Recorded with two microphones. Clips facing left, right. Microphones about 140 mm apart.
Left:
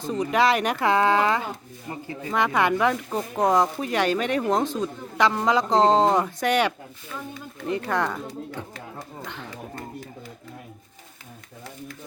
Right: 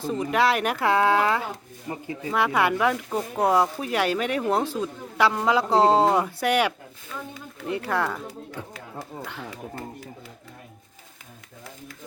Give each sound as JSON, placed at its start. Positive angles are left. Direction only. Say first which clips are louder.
{"t": 0.0, "sound": "speech", "louder": "left 1 dB", "side_deg": 0}
{"t": 1.9, "sound": "speech", "louder": "right 2 dB", "side_deg": -15}
{"t": 2.3, "sound": "speech", "louder": "left 1 dB", "side_deg": -5}